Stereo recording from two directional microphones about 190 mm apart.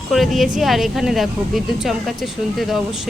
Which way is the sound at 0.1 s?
Centre (ahead or behind).